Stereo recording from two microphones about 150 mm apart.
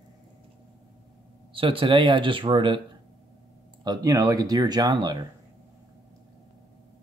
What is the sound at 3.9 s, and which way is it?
Speech, 20° right (ahead or behind).